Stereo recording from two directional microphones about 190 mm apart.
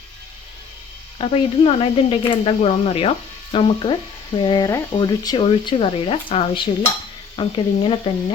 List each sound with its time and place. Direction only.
1.2 s speech: 30° left (ahead or behind)